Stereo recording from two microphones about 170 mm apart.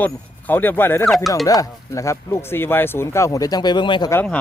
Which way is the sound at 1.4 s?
20° left (ahead or behind).